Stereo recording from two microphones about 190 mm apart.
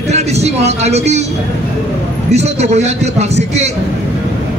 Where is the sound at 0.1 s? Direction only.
35° right (ahead or behind).